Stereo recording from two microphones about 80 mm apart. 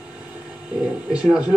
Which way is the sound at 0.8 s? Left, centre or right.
Centre.